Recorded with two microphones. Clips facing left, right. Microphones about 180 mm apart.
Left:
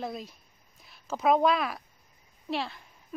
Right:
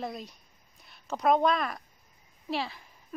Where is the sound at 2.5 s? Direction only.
Centre (ahead or behind).